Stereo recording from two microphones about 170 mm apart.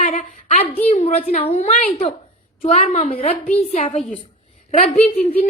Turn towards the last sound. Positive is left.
turn(degrees=60)  # may be behind; listen again after turning